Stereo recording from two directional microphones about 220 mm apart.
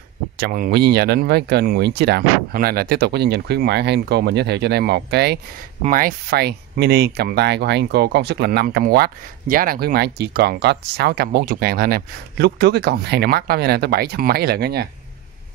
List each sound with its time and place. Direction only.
0.4 s speech: 40° right (ahead or behind)